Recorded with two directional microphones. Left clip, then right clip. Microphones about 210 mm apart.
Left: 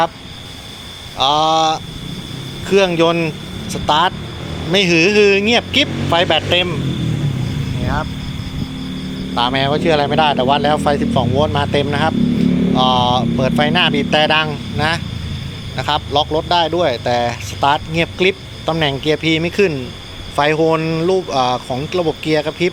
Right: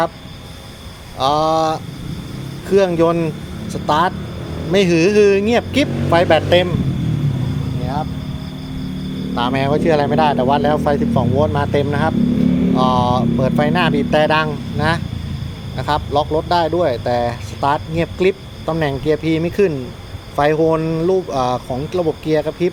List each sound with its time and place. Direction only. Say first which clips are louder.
1.2 s speech: left 2 dB; 5° right (ahead or behind)
9.3 s speech: left 2 dB; 5° right (ahead or behind)